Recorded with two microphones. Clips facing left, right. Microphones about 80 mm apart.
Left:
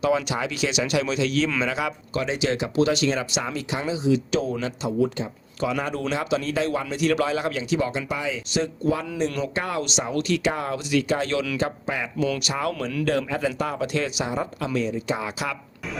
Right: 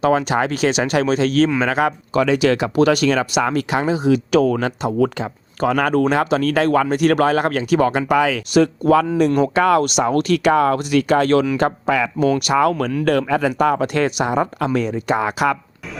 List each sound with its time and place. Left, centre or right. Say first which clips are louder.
0.0 s speech: right 6 dB; right
5.0 s speech: right 5 dB; right
5.5 s speech: right 9 dB; right
12.4 s speech: right 10 dB; right